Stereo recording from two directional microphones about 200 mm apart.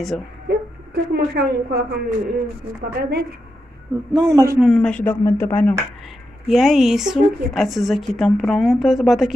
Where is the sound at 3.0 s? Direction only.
55° right (ahead or behind).